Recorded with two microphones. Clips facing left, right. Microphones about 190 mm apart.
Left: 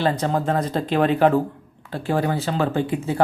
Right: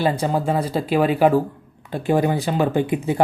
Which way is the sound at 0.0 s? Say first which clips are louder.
Right 1 dB; 10° right (ahead or behind).